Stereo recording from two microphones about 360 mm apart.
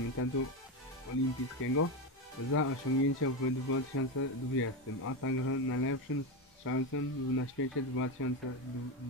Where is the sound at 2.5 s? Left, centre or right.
Left.